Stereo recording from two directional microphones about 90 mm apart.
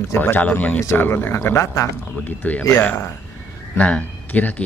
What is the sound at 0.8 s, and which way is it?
Speech, 30° left (ahead or behind).